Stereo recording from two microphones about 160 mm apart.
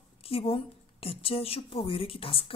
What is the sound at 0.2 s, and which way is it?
A woman's voice, 35° left (ahead or behind).